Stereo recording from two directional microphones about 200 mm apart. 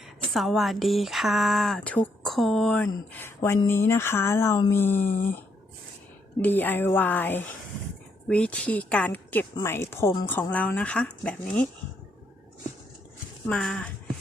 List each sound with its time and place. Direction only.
0.3 s speech: centre (ahead or behind)
5.1 s speech: 45° left (ahead or behind)
6.4 s speech: 10° left (ahead or behind)
13.5 s speech: 5° left (ahead or behind)